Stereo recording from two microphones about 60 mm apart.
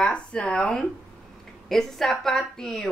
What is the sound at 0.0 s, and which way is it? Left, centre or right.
Speech, centre.